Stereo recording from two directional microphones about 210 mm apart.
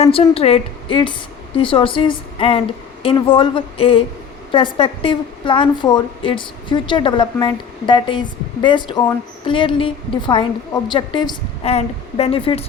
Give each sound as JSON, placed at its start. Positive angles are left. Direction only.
{"t": 0.0, "sound": "a woman's voice", "side_deg": 25}